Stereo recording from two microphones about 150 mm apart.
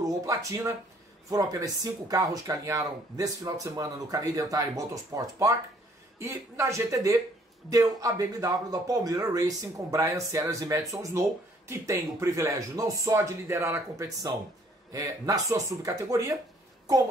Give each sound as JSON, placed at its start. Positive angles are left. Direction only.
{"t": 0.3, "sound": "speech", "side_deg": -20}